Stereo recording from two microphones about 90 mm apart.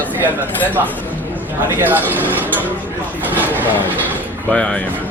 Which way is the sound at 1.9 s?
20° right (ahead or behind).